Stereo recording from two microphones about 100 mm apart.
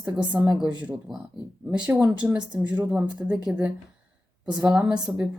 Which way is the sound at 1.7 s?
5° right (ahead or behind).